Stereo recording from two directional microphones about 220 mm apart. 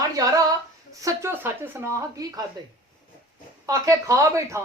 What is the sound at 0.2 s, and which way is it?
A woman's voice, 15° right (ahead or behind).